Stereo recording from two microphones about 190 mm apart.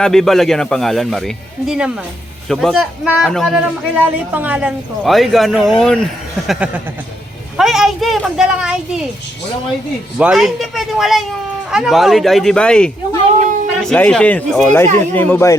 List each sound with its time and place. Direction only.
0.0 s a man's voice: centre (ahead or behind)
10.2 s a man's voice: 5° right (ahead or behind); by 15.5 s 10° left (ahead or behind)